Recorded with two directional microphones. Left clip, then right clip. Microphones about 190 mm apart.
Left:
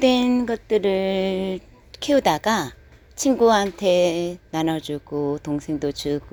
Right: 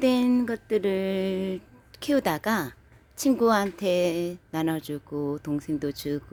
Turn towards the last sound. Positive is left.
turn(degrees=0)  # may be behind; listen again after turning